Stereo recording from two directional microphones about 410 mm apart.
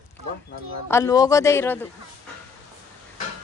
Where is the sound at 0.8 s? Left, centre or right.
Centre.